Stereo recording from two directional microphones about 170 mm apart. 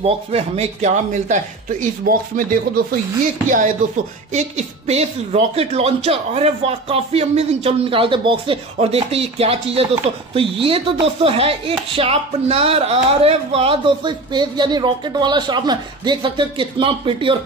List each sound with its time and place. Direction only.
0.0 s speech: 35° right (ahead or behind)